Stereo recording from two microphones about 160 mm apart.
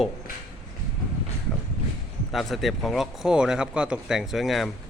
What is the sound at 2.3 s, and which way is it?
Speech, centre (ahead or behind).